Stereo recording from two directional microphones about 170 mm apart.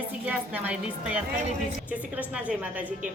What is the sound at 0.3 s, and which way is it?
A woman's voice, 10° right (ahead or behind).